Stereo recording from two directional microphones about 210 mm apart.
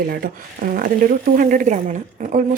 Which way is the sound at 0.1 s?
45° right (ahead or behind).